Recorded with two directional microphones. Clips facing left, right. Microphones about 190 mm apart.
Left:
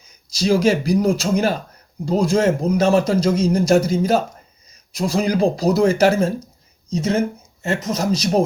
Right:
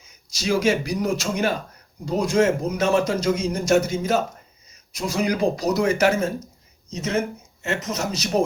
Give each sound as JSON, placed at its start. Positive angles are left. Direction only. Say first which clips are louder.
{"t": 0.3, "sound": "speech", "louder": "left 4 dB", "side_deg": 35}